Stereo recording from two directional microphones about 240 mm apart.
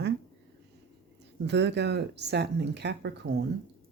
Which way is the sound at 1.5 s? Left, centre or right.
Right.